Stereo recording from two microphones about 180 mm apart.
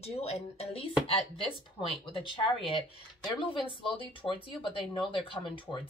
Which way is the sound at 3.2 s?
25° left (ahead or behind).